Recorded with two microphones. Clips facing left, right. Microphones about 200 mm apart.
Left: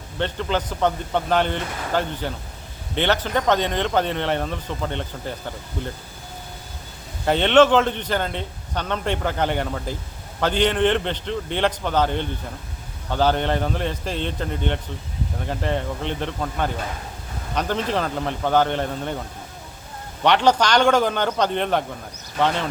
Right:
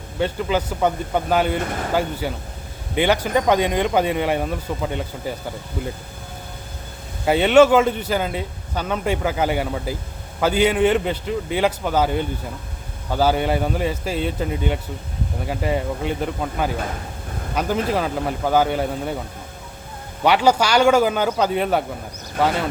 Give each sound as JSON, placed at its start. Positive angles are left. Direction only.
{"t": 0.2, "sound": "speech", "side_deg": -5}
{"t": 7.3, "sound": "speech", "side_deg": -10}
{"t": 20.2, "sound": "speech", "side_deg": -10}